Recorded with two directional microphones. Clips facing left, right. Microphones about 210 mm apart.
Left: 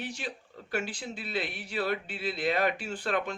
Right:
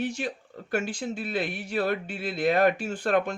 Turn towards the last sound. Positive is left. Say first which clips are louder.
# right 6 dB
turn(degrees=-45)  # may be behind; listen again after turning